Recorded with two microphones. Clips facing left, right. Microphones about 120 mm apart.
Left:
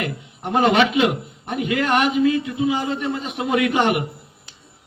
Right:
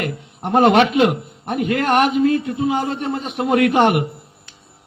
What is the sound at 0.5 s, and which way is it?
A man's voice, 50° right (ahead or behind).